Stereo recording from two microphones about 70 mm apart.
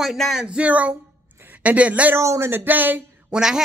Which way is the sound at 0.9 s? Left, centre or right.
Right.